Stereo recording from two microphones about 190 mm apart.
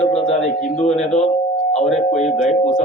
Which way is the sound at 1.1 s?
35° left (ahead or behind).